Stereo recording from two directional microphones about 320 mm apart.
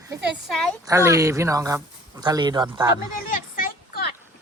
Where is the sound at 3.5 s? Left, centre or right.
Left.